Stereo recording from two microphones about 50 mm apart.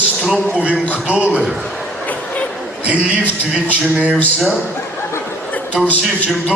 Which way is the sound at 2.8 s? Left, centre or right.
Right.